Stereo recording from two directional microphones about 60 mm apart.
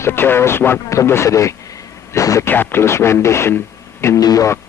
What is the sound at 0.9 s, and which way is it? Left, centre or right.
Speech, left.